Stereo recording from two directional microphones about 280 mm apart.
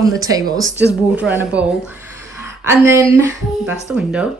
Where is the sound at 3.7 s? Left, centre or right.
Centre.